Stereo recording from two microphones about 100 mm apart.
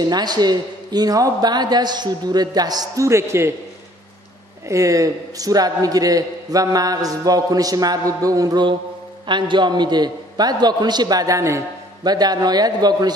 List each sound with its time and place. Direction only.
0.0 s speech: 45° right (ahead or behind)
3.1 s a man's voice: 30° right (ahead or behind)
4.6 s a man's voice: 30° right (ahead or behind)
9.3 s speech: 50° right (ahead or behind); by 11.6 s 30° right (ahead or behind)
12.0 s speech: 45° right (ahead or behind)